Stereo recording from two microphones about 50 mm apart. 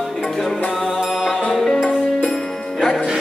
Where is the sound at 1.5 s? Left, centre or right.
Centre.